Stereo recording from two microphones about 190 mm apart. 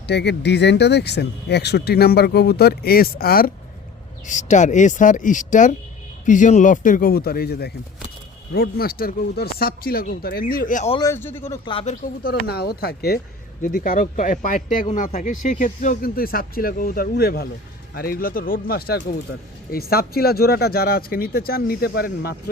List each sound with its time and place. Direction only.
0.1 s speech: 65° left (ahead or behind)
4.3 s speech: 40° left (ahead or behind)
10.9 s a man's voice: 15° left (ahead or behind)
11.6 s speech: 30° left (ahead or behind)
12.0 s speech: 50° left (ahead or behind)